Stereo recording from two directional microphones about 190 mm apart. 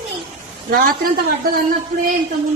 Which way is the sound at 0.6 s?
50° right (ahead or behind).